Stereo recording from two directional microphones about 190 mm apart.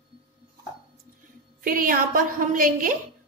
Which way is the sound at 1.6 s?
45° right (ahead or behind).